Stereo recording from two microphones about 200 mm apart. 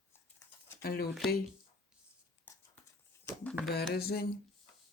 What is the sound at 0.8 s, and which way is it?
Speech, 50° left (ahead or behind).